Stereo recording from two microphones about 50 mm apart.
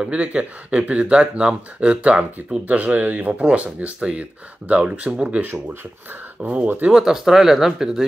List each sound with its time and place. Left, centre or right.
0.0 s speech: right
6.4 s speech: right